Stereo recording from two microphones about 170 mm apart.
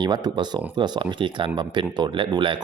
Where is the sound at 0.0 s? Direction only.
25° right (ahead or behind).